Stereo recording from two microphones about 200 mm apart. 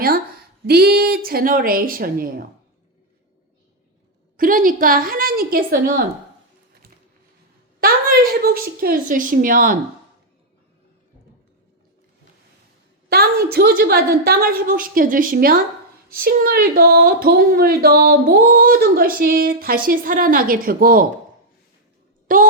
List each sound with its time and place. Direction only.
0.7 s speech: 50° right (ahead or behind)
4.4 s speech: 45° right (ahead or behind)
7.8 s speech: 45° right (ahead or behind)
13.1 s speech: 50° right (ahead or behind)
22.3 s speech: 45° right (ahead or behind)